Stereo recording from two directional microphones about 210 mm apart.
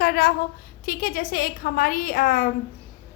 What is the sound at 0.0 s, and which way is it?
A woman's voice, 50° left (ahead or behind).